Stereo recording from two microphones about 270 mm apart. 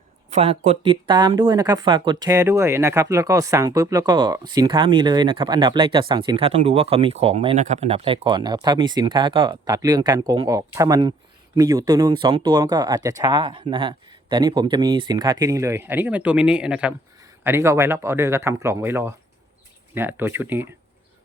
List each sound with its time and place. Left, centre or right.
0.3 s speech: right; by 20.7 s centre